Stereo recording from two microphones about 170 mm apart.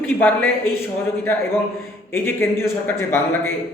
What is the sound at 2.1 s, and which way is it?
A man's voice, 15° left (ahead or behind).